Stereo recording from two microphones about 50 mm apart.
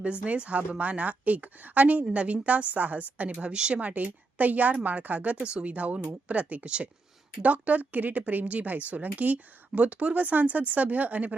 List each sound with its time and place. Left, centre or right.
0.0 s a woman's voice: right
3.4 s a woman's voice: centre